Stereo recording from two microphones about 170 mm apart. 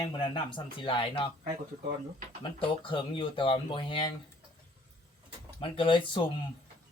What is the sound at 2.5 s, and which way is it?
Speech, 30° left (ahead or behind).